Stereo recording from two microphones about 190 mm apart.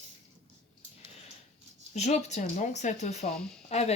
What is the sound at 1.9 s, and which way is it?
Speech, 35° left (ahead or behind).